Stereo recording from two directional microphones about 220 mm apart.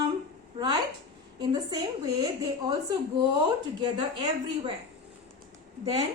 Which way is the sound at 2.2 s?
15° right (ahead or behind).